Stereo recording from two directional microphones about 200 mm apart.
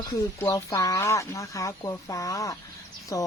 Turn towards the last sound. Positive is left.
turn(degrees=15)  # may be behind; listen again after turning